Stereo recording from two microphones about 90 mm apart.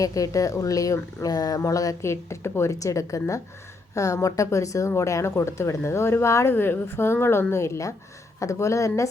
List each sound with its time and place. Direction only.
0.0 s speech: 40° left (ahead or behind)